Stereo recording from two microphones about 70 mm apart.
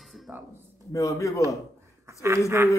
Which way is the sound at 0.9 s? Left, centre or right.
Left.